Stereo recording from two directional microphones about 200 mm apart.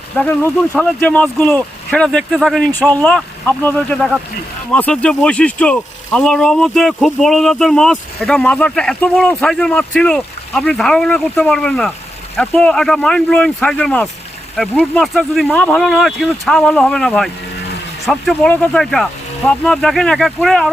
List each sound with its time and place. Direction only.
0.2 s speech: 10° left (ahead or behind)